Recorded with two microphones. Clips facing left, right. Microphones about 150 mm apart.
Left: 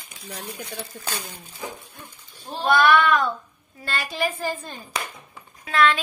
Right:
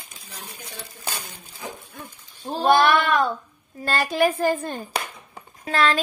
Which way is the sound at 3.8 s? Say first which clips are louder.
Right 6 dB; 55° right (ahead or behind).